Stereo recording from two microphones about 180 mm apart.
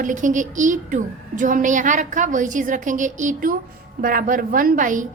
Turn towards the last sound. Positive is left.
turn(degrees=-45)  # may be behind; listen again after turning